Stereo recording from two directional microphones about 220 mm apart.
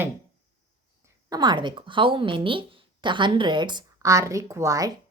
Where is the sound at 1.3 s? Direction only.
20° right (ahead or behind).